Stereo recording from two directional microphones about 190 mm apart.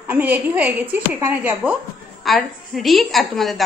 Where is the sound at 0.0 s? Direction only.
10° right (ahead or behind).